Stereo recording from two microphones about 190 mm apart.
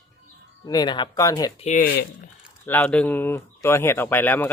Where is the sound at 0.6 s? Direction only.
20° left (ahead or behind).